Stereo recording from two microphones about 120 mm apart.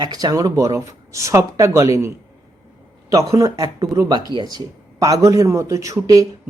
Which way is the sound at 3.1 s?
25° right (ahead or behind).